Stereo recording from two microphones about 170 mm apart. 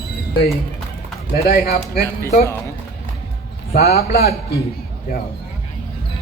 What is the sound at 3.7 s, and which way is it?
Speech, 65° left (ahead or behind).